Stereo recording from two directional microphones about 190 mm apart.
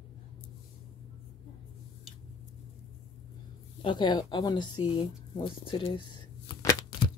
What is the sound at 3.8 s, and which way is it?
Speech, 25° left (ahead or behind).